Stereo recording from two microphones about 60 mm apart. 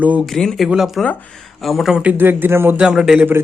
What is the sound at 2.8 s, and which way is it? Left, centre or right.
Speech, centre.